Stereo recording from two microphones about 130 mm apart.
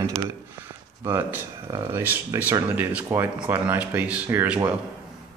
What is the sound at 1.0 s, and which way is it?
Speech, 15° right (ahead or behind).